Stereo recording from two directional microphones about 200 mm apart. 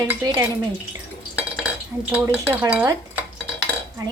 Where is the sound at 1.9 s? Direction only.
10° right (ahead or behind).